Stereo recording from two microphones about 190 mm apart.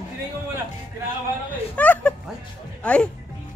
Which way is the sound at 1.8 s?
10° left (ahead or behind).